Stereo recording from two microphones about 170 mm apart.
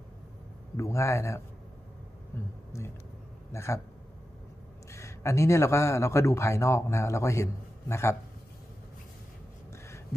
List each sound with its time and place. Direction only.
0.7 s a man's voice: 15° left (ahead or behind)
4.9 s a man's voice: 15° left (ahead or behind)
9.7 s a sound: 15° left (ahead or behind)